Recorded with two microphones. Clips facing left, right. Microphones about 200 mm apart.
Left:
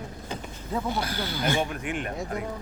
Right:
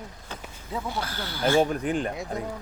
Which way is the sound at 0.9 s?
15° left (ahead or behind).